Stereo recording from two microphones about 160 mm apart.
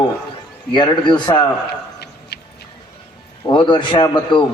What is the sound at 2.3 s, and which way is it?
Music, 90° left.